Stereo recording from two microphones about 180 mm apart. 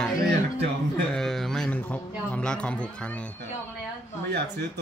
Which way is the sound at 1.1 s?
Centre (ahead or behind).